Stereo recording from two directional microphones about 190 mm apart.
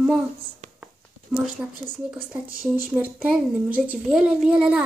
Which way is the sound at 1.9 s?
5° right (ahead or behind).